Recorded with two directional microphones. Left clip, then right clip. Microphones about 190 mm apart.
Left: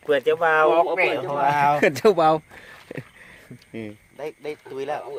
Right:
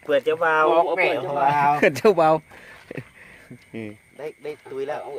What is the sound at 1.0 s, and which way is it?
Speech, 15° left (ahead or behind).